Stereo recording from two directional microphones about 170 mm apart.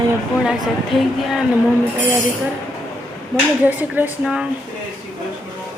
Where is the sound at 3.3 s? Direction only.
10° right (ahead or behind).